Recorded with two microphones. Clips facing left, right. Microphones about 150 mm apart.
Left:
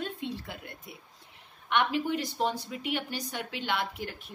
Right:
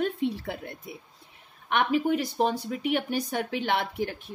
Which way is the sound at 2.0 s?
50° right (ahead or behind).